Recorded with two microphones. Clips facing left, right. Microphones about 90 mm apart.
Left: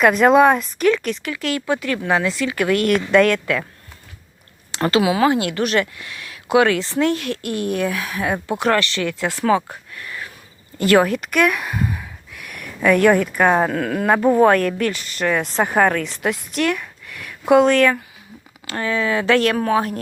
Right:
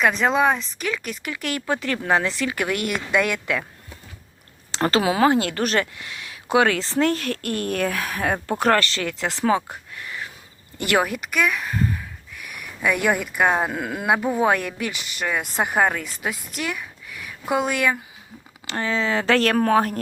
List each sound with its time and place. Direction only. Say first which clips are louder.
0.0 s speech: left 7 dB; 5° left (ahead or behind)
1.3 s speech: left 2 dB; 20° right (ahead or behind)
2.9 s a woman's voice: left 7 dB; 10° right (ahead or behind)
4.7 s speech: left 3 dB; 35° right (ahead or behind)
9.9 s a sound: left 1 dB; 25° right (ahead or behind)
10.8 s a woman's voice: left 6 dB; 20° right (ahead or behind); by 16.5 s centre (ahead or behind)
16.6 s a sound: left 8 dB; 5° right (ahead or behind)
17.5 s a woman's voice: left 8 dB; 5° right (ahead or behind)
18.6 s speech: left 2 dB; 25° right (ahead or behind); by 20.0 s 40° right (ahead or behind)